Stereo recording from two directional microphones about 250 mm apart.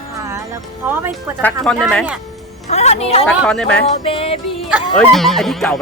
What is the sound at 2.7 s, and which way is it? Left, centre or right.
Speech, left.